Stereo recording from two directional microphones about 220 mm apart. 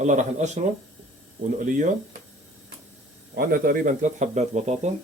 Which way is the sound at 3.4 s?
40° right (ahead or behind).